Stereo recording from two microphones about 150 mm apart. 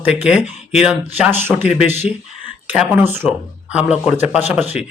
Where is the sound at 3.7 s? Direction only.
10° right (ahead or behind).